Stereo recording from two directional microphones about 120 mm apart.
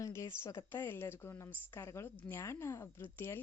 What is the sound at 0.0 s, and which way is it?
Speech, 25° left (ahead or behind).